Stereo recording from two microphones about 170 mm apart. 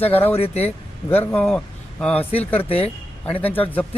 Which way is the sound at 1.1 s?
10° left (ahead or behind).